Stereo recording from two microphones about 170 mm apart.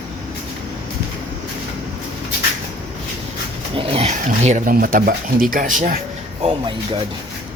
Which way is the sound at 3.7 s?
35° right (ahead or behind).